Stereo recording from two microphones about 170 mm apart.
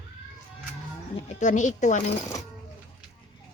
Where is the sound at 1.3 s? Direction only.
45° left (ahead or behind).